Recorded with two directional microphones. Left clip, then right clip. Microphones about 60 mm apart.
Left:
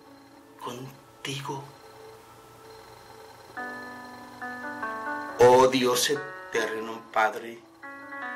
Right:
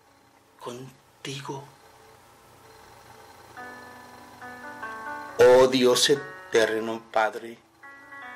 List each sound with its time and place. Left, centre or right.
0.6 s speech: right
3.5 s music: centre
4.9 s music: centre
5.5 s speech: right
6.1 s music: centre
6.5 s speech: right
7.8 s music: centre